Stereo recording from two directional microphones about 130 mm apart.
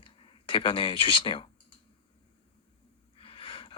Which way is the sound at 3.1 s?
45° left (ahead or behind).